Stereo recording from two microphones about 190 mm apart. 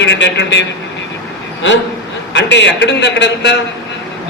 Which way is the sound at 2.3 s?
70° left (ahead or behind).